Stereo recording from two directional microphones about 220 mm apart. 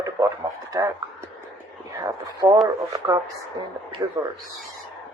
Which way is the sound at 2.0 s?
15° right (ahead or behind).